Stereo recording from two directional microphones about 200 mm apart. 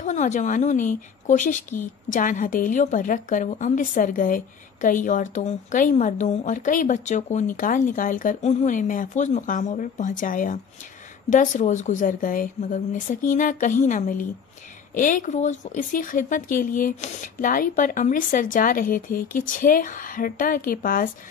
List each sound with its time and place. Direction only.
0.0 s speech: 40° left (ahead or behind)